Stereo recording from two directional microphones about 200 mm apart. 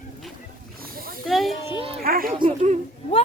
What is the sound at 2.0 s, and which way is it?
Speech, 45° right (ahead or behind).